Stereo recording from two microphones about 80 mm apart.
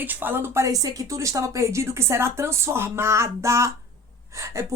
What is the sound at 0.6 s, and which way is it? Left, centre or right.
A woman's voice, right.